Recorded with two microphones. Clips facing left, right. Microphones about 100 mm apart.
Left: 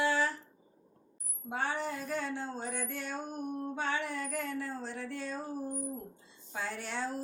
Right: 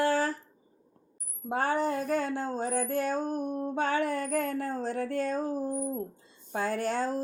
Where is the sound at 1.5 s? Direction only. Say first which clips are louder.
Right 7 dB; 45° right (ahead or behind).